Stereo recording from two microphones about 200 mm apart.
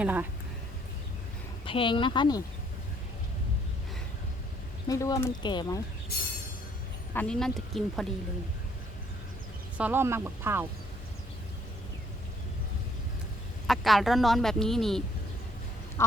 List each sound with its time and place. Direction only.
0.0 s speech: 10° right (ahead or behind)
1.6 s speech: 25° left (ahead or behind)
4.9 s speech: 15° left (ahead or behind)
7.1 s speech: 5° left (ahead or behind)
9.7 s speech: 10° right (ahead or behind)
13.7 s speech: centre (ahead or behind)
16.0 s speech: 15° left (ahead or behind)